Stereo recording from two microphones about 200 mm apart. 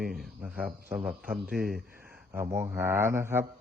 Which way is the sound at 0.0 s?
Centre (ahead or behind).